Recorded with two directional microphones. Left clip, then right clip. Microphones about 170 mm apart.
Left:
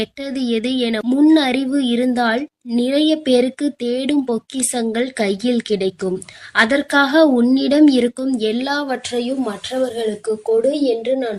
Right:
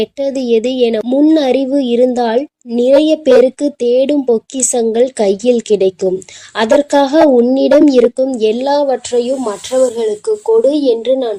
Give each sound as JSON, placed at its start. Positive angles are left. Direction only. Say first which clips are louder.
{"t": 0.0, "sound": "a woman's voice", "louder": "right 8 dB", "side_deg": -10}
{"t": 10.7, "sound": "a woman's voice", "louder": "right 6 dB", "side_deg": -25}